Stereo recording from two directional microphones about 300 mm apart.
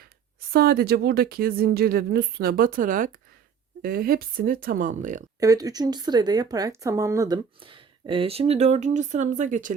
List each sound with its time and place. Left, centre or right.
0.5 s a woman's voice: right
5.4 s speech: centre